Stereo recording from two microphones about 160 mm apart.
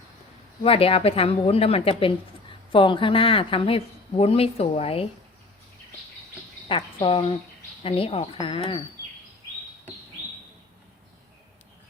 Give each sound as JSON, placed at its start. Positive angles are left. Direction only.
{"t": 0.6, "sound": "a woman's voice", "side_deg": 35}
{"t": 6.7, "sound": "a woman's voice", "side_deg": 35}